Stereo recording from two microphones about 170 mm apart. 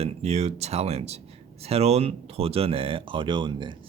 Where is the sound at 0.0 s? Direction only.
40° right (ahead or behind).